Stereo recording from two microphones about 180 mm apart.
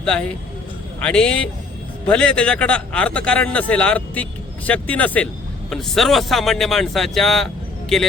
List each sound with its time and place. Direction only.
0.0 s a man's voice: 5° left (ahead or behind)